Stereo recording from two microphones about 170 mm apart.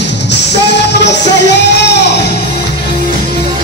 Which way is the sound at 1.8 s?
85° left.